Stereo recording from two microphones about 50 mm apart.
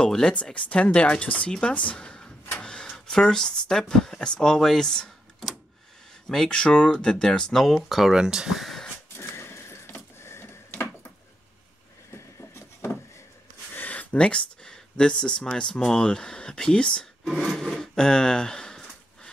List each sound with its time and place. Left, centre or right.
0.0 s speech: centre
1.5 s a sound: left
3.1 s speech: centre
6.2 s speech: centre
7.5 s speech: centre
8.1 s speech: centre
9.1 s a sound: left
12.1 s a sound: left
13.7 s speech: left
17.2 s wood: centre